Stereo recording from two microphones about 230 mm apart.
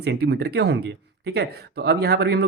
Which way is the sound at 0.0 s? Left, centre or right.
Right.